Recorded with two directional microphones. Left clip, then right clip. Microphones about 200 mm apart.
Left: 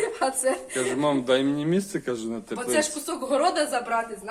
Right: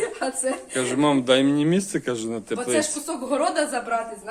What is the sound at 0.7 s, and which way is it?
A man's voice, 40° right (ahead or behind).